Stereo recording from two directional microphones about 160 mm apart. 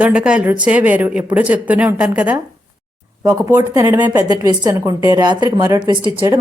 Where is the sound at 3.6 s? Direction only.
20° right (ahead or behind).